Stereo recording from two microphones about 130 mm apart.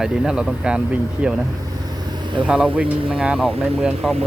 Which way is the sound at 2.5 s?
5° right (ahead or behind).